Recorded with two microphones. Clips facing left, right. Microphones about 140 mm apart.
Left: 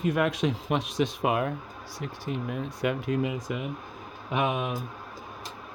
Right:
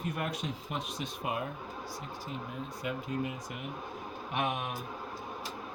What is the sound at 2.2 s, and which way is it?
Speech, 75° left (ahead or behind).